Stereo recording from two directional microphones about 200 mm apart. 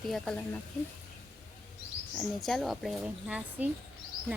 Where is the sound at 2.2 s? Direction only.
Centre (ahead or behind).